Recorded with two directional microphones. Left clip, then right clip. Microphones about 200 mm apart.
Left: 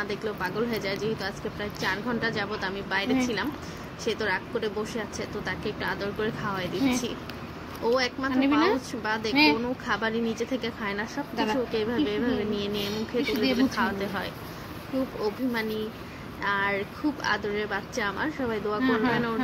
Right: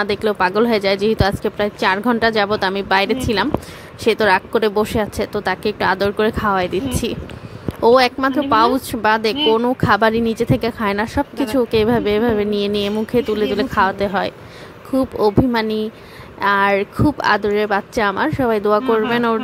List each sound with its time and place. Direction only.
0.0 s speech: 50° right (ahead or behind)